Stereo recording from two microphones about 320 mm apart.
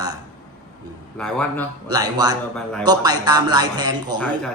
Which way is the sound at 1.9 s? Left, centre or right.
Centre.